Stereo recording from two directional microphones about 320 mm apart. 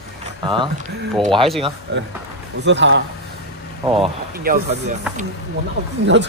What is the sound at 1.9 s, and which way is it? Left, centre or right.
Speech, right.